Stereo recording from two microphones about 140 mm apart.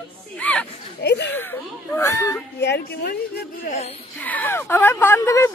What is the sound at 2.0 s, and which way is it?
Speech, 20° left (ahead or behind).